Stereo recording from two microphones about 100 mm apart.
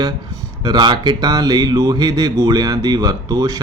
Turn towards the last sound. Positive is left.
turn(degrees=-40)  # may be behind; listen again after turning